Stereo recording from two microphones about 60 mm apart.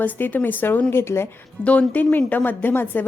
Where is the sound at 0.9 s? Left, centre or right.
Left.